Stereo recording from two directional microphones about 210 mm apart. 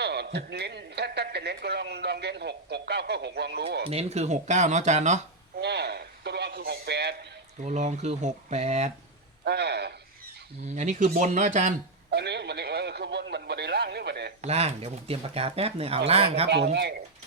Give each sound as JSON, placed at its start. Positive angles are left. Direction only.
{"t": 0.0, "sound": "speech", "side_deg": -50}
{"t": 3.8, "sound": "speech", "side_deg": -30}
{"t": 5.5, "sound": "a sound", "side_deg": -50}
{"t": 7.6, "sound": "speech", "side_deg": -35}
{"t": 9.4, "sound": "speech", "side_deg": -50}
{"t": 10.8, "sound": "speech", "side_deg": -35}
{"t": 12.1, "sound": "speech", "side_deg": -55}
{"t": 14.4, "sound": "speech", "side_deg": -30}